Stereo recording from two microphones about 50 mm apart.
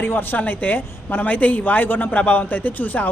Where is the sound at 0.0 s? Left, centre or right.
Left.